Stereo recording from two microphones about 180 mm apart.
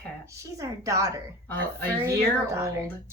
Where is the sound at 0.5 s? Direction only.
20° right (ahead or behind).